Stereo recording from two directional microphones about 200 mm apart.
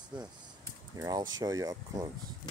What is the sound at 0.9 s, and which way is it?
Speech, 20° right (ahead or behind).